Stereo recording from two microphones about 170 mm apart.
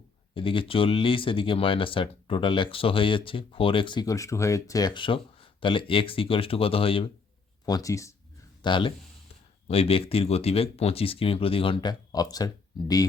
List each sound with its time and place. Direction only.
0.3 s speech: 30° left (ahead or behind)
7.6 s speech: 20° left (ahead or behind)